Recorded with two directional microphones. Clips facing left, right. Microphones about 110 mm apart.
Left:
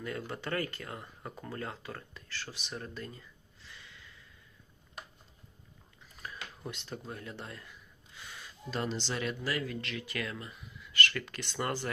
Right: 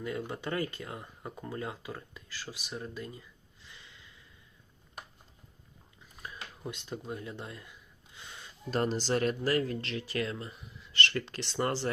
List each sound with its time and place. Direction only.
0.0 s speech: 15° right (ahead or behind)
6.7 s speech: 15° right (ahead or behind)
7.1 s a sound: 20° right (ahead or behind)
8.7 s speech: 45° right (ahead or behind)